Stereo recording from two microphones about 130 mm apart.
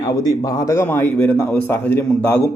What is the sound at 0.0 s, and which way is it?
A man's voice, 30° left (ahead or behind).